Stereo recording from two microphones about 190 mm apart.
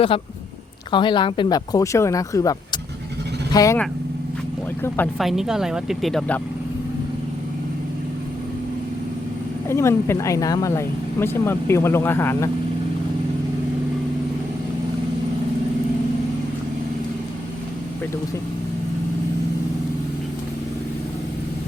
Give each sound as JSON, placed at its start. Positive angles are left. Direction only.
{"t": 0.9, "sound": "speech", "side_deg": 25}
{"t": 5.1, "sound": "speech", "side_deg": 0}
{"t": 9.6, "sound": "speech", "side_deg": 15}